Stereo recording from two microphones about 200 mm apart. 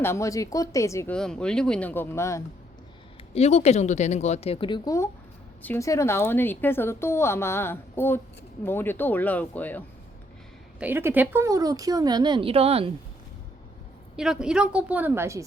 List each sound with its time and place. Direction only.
0.0 s a woman's voice: 15° left (ahead or behind)
3.3 s a woman's voice: 30° left (ahead or behind); by 9.8 s 10° left (ahead or behind)
10.8 s speech: 10° right (ahead or behind); by 12.9 s 30° right (ahead or behind)
14.2 s speech: 5° right (ahead or behind)